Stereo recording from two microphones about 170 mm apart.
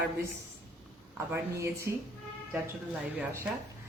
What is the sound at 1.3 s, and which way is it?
Speech, 15° right (ahead or behind).